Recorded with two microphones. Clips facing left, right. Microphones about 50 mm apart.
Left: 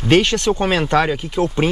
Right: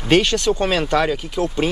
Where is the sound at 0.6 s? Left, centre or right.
Centre.